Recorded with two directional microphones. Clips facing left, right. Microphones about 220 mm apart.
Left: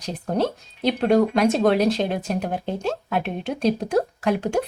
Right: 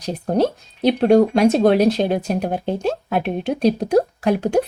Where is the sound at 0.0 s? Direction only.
35° right (ahead or behind).